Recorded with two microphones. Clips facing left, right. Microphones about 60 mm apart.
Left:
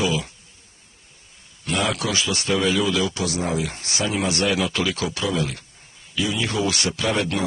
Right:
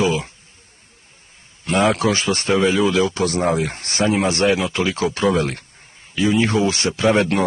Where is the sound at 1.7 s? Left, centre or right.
Right.